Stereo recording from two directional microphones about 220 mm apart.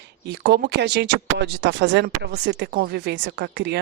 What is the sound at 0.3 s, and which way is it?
Speech, 50° right (ahead or behind).